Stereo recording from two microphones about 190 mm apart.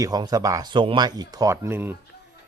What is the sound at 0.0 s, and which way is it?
A man's voice, 20° right (ahead or behind).